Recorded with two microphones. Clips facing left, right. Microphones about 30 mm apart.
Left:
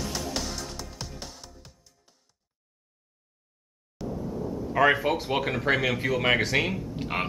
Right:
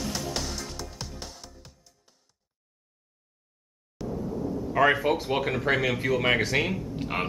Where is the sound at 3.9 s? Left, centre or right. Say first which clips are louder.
Right 1 dB; centre.